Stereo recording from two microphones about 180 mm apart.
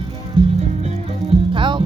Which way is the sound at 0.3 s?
30° right (ahead or behind).